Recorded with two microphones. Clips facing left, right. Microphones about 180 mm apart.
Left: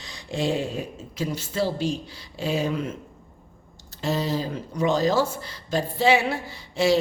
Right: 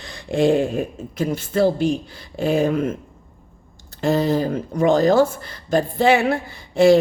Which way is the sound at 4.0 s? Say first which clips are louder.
Right 7 dB; 55° right (ahead or behind).